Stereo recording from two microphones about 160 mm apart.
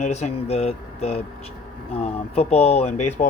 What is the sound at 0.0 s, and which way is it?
Speech, 45° left (ahead or behind).